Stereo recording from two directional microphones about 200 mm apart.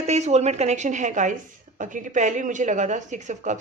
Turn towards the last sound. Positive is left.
turn(degrees=-35)  # may be behind; listen again after turning